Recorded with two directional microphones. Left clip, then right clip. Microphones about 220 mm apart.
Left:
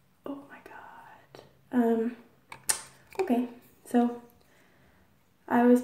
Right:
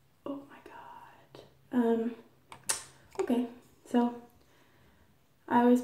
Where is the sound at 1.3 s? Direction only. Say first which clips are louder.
Left 3 dB; 5° left (ahead or behind).